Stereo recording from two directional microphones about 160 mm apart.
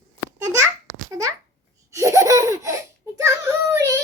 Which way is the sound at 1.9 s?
20° right (ahead or behind).